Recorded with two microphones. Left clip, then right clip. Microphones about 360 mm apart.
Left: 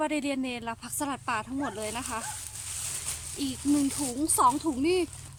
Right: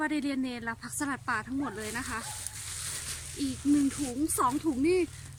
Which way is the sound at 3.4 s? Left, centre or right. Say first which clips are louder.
Even; centre.